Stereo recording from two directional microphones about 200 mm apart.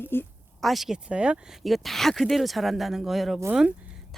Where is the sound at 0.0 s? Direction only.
10° left (ahead or behind).